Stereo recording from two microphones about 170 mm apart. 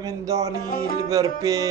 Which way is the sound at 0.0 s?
20° right (ahead or behind).